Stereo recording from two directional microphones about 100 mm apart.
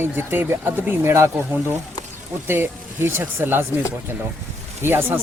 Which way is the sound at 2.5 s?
25° right (ahead or behind).